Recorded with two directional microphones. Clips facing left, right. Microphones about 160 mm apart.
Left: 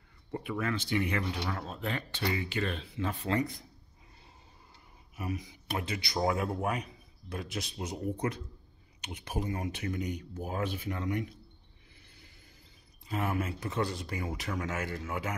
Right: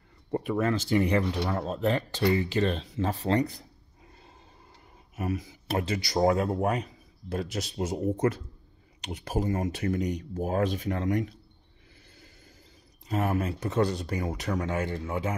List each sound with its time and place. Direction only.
0.3 s speech: 40° right (ahead or behind)
5.1 s speech: 50° right (ahead or behind)
5.8 s speech: 40° right (ahead or behind)
7.8 s speech: 45° right (ahead or behind)
10.3 s speech: 50° right (ahead or behind)
13.0 s speech: 40° right (ahead or behind)